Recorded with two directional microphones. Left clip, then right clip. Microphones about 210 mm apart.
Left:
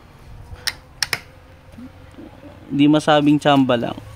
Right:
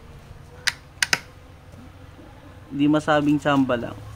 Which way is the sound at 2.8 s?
45° left (ahead or behind).